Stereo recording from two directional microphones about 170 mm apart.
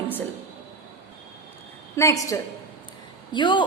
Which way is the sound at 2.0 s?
20° left (ahead or behind).